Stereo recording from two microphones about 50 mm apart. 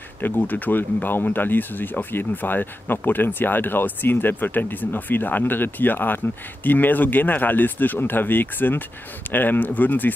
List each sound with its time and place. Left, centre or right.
0.2 s speech: left